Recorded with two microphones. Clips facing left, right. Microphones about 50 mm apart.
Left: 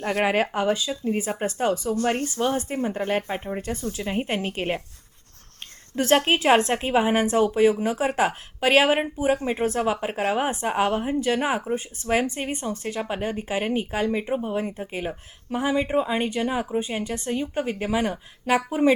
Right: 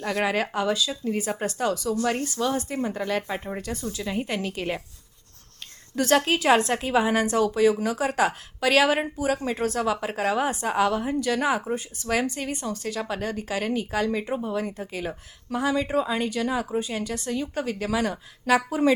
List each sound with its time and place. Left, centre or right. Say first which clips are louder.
0.0 s speech: left 3 dB; left
6.0 s speech: left 1 dB; left